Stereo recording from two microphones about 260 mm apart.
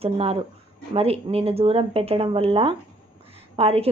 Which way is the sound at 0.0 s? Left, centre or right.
Right.